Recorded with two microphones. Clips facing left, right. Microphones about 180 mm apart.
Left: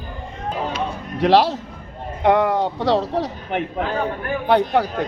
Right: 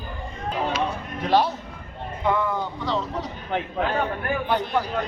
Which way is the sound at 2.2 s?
75° left (ahead or behind).